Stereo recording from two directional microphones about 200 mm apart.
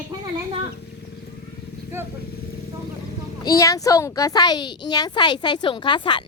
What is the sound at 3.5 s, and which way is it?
Speech, 15° left (ahead or behind).